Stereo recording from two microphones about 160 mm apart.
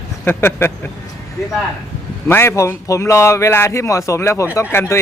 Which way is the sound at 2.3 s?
15° left (ahead or behind).